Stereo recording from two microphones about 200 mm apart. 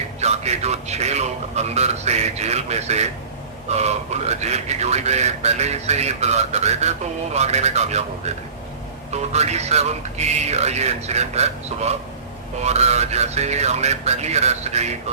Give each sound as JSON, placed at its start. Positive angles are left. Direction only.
{"t": 0.2, "sound": "a man's voice", "side_deg": -35}
{"t": 9.3, "sound": "speech", "side_deg": -35}